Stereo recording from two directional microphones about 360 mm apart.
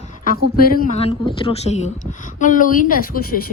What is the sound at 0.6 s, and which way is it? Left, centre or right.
A woman's voice, left.